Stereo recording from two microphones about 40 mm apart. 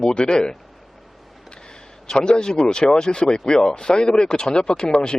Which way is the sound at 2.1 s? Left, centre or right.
Centre.